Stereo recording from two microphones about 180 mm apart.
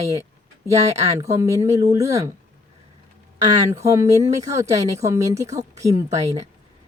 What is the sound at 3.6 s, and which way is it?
Speech, 15° right (ahead or behind).